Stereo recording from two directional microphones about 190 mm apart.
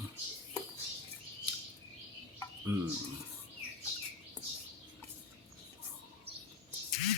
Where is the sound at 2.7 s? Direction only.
15° right (ahead or behind).